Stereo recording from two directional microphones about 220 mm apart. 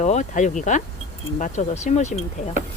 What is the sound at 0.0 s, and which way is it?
Speech, 35° left (ahead or behind).